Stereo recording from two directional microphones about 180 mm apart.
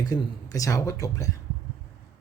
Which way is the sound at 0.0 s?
20° left (ahead or behind).